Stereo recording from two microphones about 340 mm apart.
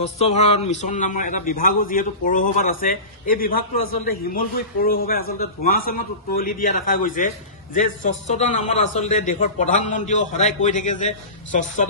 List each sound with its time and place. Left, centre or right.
0.0 s a man's voice: centre
3.5 s a man's voice: left
4.0 s a man's voice: left